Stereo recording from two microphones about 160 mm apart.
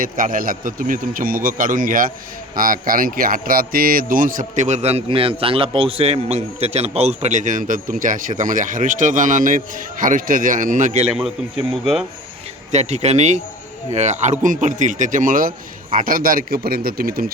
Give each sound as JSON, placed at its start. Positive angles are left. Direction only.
{"t": 0.0, "sound": "a man's voice", "side_deg": -60}
{"t": 11.1, "sound": "speech", "side_deg": 0}
{"t": 12.7, "sound": "a man's voice", "side_deg": -45}